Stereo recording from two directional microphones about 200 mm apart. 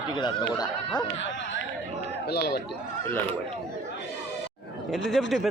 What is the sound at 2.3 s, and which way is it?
Speech, 50° left (ahead or behind).